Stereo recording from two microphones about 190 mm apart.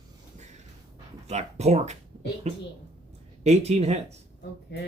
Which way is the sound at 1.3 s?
35° right (ahead or behind).